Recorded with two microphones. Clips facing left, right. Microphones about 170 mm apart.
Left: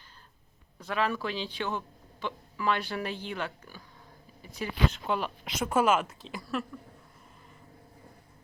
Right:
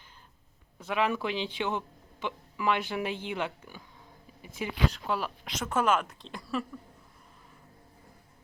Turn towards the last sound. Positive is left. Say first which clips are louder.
# even
turn(degrees=0)  # may be behind; listen again after turning